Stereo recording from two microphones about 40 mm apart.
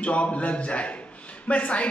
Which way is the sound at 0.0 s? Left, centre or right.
Left.